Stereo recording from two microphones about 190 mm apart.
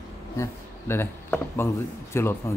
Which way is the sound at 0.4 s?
15° left (ahead or behind).